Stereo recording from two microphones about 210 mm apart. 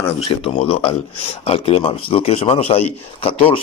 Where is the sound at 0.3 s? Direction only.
25° left (ahead or behind).